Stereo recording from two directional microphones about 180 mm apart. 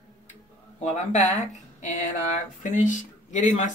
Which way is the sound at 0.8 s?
40° left (ahead or behind).